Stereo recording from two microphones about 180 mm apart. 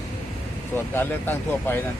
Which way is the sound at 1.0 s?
10° left (ahead or behind).